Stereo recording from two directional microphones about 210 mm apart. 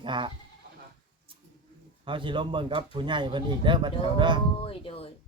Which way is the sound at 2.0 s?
25° right (ahead or behind).